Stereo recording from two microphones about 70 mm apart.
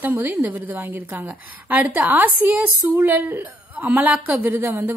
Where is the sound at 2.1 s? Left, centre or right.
Right.